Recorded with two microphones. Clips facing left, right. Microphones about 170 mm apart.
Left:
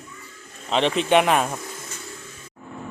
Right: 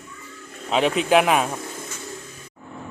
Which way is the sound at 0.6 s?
5° right (ahead or behind).